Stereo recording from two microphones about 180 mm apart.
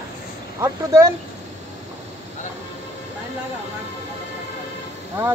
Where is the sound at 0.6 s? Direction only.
15° right (ahead or behind).